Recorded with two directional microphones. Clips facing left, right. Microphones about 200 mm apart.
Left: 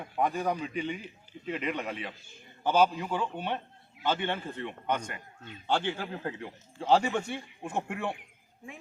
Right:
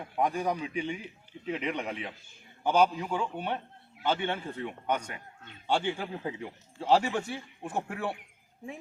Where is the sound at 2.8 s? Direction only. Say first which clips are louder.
Even; centre (ahead or behind).